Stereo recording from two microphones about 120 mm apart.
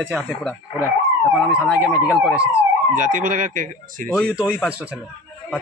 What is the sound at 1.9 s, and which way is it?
Speech, 5° right (ahead or behind).